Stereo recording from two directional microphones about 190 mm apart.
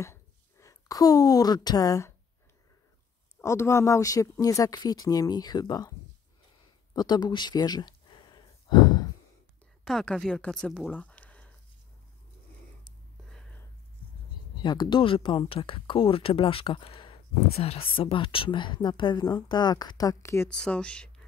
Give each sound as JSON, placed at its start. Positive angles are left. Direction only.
{"t": 0.0, "sound": "a woman's voice", "side_deg": 15}
{"t": 3.3, "sound": "speech", "side_deg": 15}
{"t": 6.9, "sound": "a sound", "side_deg": 20}
{"t": 9.8, "sound": "speech", "side_deg": 5}
{"t": 14.6, "sound": "speech", "side_deg": 25}